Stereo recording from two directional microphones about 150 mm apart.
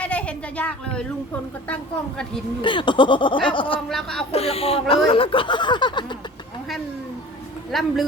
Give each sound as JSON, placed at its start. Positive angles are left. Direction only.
{"t": 0.0, "sound": "a sound", "side_deg": 10}
{"t": 1.6, "sound": "a woman's voice", "side_deg": 5}
{"t": 2.6, "sound": "speech", "side_deg": 35}
{"t": 3.8, "sound": "speech", "side_deg": 0}
{"t": 4.3, "sound": "speech", "side_deg": 40}
{"t": 7.7, "sound": "speech", "side_deg": 0}